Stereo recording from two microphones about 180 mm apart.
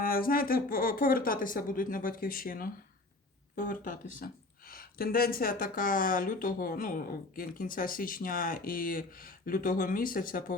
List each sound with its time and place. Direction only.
0.0 s speech: 50° left (ahead or behind)